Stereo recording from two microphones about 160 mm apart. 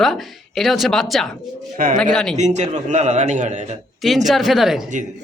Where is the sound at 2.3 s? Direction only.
45° right (ahead or behind).